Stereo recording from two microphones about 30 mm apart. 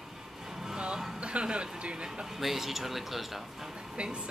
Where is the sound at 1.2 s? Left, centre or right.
Right.